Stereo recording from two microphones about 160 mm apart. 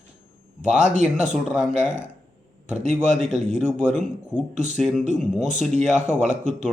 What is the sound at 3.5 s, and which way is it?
Speech, 5° right (ahead or behind).